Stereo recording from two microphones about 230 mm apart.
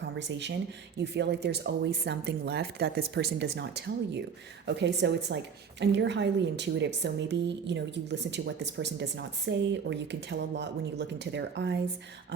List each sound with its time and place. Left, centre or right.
0.2 s speech: right